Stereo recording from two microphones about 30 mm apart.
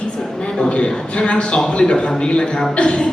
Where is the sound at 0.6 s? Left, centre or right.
Left.